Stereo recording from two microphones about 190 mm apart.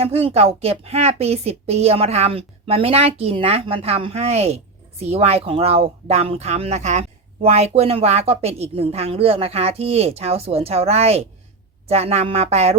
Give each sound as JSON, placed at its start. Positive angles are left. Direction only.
{"t": 0.0, "sound": "a woman's voice", "side_deg": -30}